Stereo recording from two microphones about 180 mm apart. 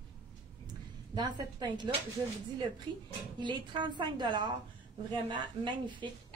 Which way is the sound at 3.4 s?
25° right (ahead or behind).